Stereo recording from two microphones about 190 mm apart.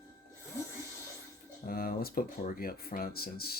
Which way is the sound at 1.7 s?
50° left (ahead or behind).